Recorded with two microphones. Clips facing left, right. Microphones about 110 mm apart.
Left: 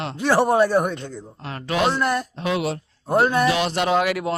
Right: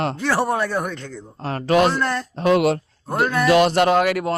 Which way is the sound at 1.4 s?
40° right (ahead or behind).